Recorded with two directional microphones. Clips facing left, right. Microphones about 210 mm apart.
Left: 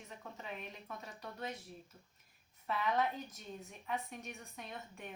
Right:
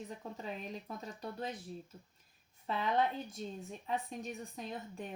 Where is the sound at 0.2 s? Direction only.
30° right (ahead or behind).